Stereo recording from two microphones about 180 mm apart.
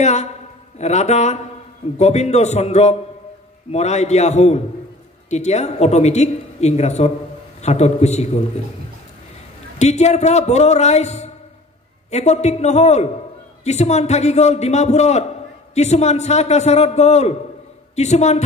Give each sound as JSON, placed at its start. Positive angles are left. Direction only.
{"t": 0.0, "sound": "a man's voice", "side_deg": 40}
{"t": 9.8, "sound": "a man's voice", "side_deg": 40}